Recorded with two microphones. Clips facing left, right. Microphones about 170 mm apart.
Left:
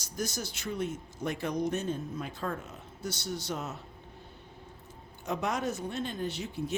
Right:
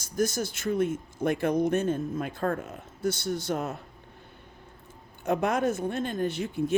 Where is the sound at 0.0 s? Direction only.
50° right (ahead or behind).